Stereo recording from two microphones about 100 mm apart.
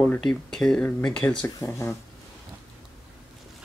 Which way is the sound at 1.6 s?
25° left (ahead or behind).